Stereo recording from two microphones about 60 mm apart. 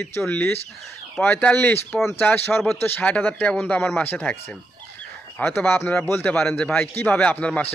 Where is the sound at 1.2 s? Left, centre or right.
Left.